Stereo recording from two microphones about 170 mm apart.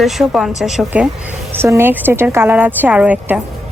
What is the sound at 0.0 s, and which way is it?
Speech, centre (ahead or behind).